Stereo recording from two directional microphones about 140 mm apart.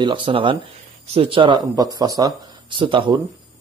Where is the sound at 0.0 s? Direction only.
35° right (ahead or behind).